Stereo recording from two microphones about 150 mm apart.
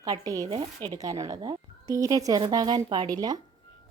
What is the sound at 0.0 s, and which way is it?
Speech, 25° right (ahead or behind).